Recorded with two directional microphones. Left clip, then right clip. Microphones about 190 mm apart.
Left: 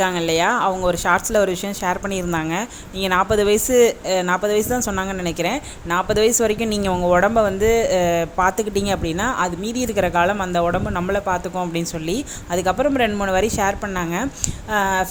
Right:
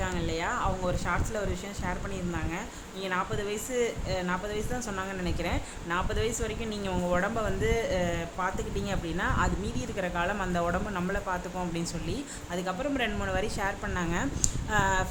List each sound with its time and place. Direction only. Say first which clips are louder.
0.0 s speech: left 14 dB; 45° left (ahead or behind)
10.3 s speech: left 10 dB; 25° left (ahead or behind)